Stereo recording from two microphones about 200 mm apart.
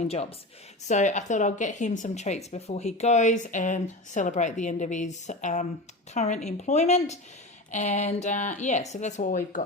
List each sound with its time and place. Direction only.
0.9 s a woman's voice: 35° left (ahead or behind)